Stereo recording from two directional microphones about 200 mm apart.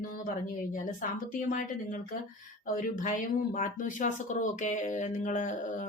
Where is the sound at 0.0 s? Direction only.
40° left (ahead or behind).